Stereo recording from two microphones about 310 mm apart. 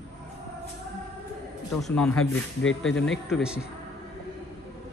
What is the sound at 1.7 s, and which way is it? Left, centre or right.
Speech, centre.